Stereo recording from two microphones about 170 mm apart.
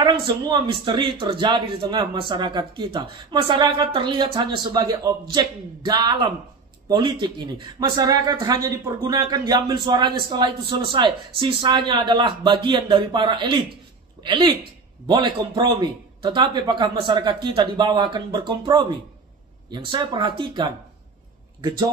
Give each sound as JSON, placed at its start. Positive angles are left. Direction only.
{"t": 0.0, "sound": "speech", "side_deg": -25}